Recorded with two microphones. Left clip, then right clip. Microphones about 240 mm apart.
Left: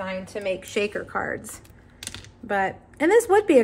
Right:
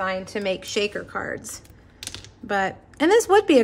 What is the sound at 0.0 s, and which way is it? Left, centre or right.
Speech, right.